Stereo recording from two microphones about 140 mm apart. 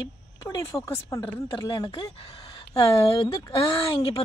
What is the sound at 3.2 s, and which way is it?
Speech, 35° left (ahead or behind).